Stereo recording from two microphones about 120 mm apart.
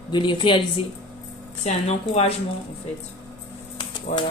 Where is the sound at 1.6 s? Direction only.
60° left (ahead or behind).